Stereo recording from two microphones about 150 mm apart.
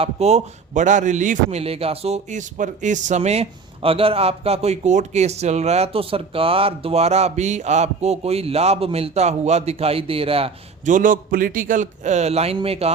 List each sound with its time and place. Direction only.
0.0 s a man's voice: 45° right (ahead or behind)
10.8 s a man's voice: 60° right (ahead or behind); by 12.9 s 40° right (ahead or behind)